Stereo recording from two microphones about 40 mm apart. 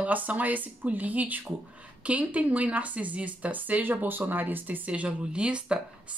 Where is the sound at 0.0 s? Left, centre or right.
Right.